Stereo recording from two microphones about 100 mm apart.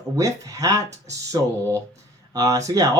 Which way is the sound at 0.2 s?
35° right (ahead or behind).